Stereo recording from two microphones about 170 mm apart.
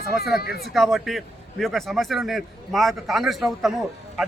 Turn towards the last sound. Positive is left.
turn(degrees=0)  # may be behind; listen again after turning